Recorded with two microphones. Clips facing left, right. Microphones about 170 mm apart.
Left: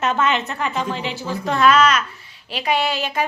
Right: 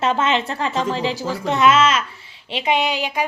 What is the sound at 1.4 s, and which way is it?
A woman's voice, 25° right (ahead or behind).